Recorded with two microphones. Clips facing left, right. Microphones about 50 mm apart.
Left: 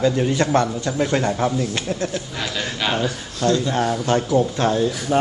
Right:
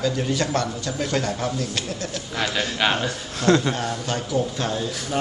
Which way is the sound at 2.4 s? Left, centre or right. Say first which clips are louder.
Right 3 dB; right.